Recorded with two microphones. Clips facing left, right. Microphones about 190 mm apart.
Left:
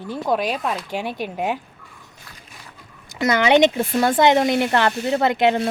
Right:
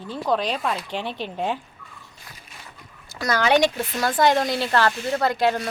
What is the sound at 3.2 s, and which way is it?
Speech, 20° left (ahead or behind).